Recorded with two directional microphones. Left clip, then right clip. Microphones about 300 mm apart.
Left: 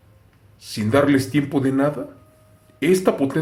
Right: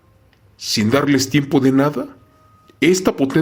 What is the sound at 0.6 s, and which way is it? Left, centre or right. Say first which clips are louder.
Speech: right 1 dB; right.